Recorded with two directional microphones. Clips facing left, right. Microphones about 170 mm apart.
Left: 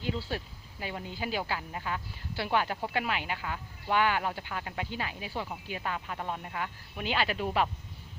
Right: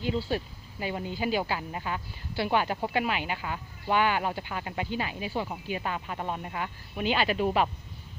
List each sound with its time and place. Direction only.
0.0 s speech: 15° right (ahead or behind)